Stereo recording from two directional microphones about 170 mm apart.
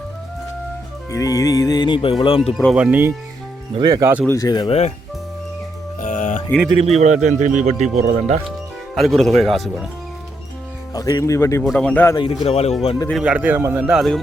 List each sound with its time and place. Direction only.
1.1 s speech: 20° left (ahead or behind)
2.7 s speech: 10° right (ahead or behind)
3.8 s speech: 20° right (ahead or behind)
4.3 s speech: 20° left (ahead or behind)
6.0 s music: 50° left (ahead or behind)
6.7 s a man's voice: 40° right (ahead or behind)
9.0 s speech: centre (ahead or behind)
10.9 s speech: 20° left (ahead or behind)
12.1 s speech: 30° left (ahead or behind)
13.1 s speech: 5° right (ahead or behind)